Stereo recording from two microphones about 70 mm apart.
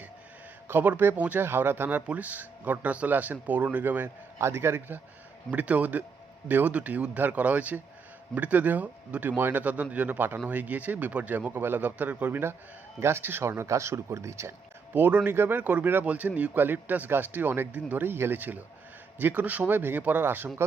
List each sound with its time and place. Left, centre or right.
0.7 s speech: right
1.4 s speech: right
4.4 s speech: right
5.5 s speech: right
14.9 s speech: right